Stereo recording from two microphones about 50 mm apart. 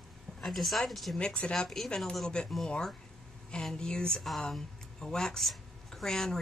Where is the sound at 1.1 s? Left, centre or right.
Centre.